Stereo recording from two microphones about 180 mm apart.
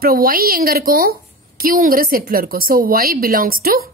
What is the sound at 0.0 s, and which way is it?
A woman's voice, 55° right (ahead or behind).